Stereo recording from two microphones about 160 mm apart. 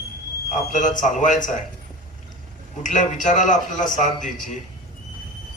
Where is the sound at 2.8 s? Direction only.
50° left (ahead or behind).